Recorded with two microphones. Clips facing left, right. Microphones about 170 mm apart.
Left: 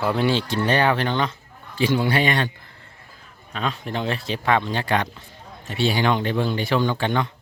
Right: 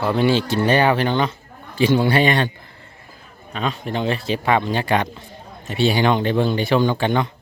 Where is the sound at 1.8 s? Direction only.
30° right (ahead or behind).